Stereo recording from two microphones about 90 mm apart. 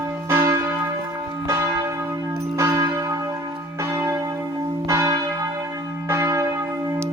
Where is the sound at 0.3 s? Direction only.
25° right (ahead or behind).